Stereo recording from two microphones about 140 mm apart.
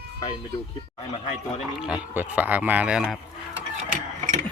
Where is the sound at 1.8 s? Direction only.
10° right (ahead or behind).